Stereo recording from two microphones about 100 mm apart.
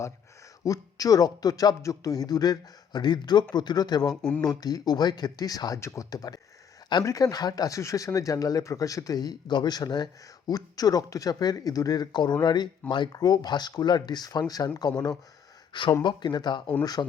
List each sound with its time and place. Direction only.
0.6 s speech: 35° left (ahead or behind)
4.1 s speech: 10° left (ahead or behind)
4.4 s speech: 40° left (ahead or behind)
15.7 s speech: 50° left (ahead or behind)